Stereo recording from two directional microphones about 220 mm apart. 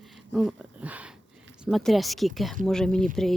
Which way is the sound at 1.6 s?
Centre (ahead or behind).